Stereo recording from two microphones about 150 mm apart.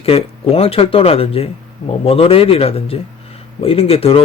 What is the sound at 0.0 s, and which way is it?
Speech, 40° left (ahead or behind).